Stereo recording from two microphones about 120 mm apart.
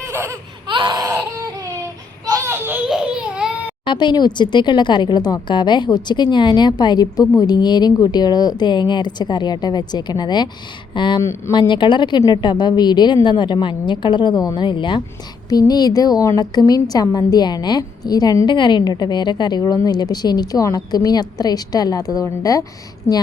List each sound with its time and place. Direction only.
0.1 s laughter: 20° right (ahead or behind)
0.7 s baby cry: 40° right (ahead or behind)
2.5 s baby laughter: 15° right (ahead or behind)
2.8 s babbling: 5° right (ahead or behind)
3.8 s a woman's voice: 40° left (ahead or behind)
11.2 s speech: 25° left (ahead or behind)
11.7 s a woman's voice: 40° left (ahead or behind)